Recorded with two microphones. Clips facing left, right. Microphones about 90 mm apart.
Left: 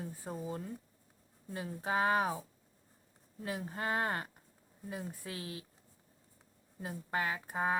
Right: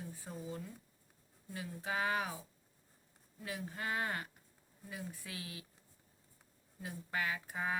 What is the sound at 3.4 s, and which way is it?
Speech, 35° left (ahead or behind).